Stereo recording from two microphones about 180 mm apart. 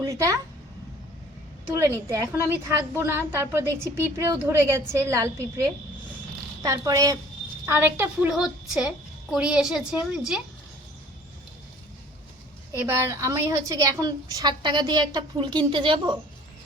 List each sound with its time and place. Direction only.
0.0 s speech: 20° right (ahead or behind)
1.7 s a woman's voice: 15° right (ahead or behind)
12.7 s a woman's voice: 15° right (ahead or behind)